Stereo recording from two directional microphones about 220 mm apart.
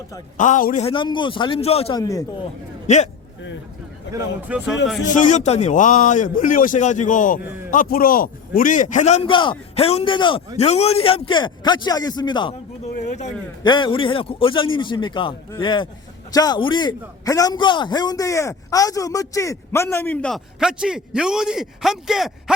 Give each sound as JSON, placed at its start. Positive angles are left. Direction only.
{"t": 0.3, "sound": "a man's voice", "side_deg": 35}
{"t": 2.8, "sound": "a man's voice", "side_deg": 30}
{"t": 4.1, "sound": "a sound", "side_deg": 55}
{"t": 4.4, "sound": "speech", "side_deg": -5}
{"t": 5.0, "sound": "a man's voice", "side_deg": 35}
{"t": 12.9, "sound": "a sound", "side_deg": 35}
{"t": 13.6, "sound": "a man's voice", "side_deg": 20}